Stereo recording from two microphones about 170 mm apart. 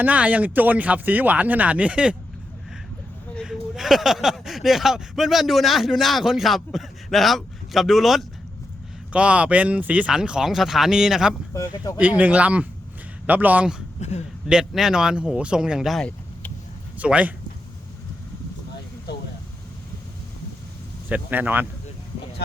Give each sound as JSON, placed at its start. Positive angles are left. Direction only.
{"t": 0.0, "sound": "speech", "side_deg": -10}
{"t": 3.3, "sound": "speech", "side_deg": 0}
{"t": 11.5, "sound": "speech", "side_deg": 20}
{"t": 11.9, "sound": "speech", "side_deg": -10}
{"t": 17.0, "sound": "speech", "side_deg": -10}
{"t": 21.1, "sound": "speech", "side_deg": -10}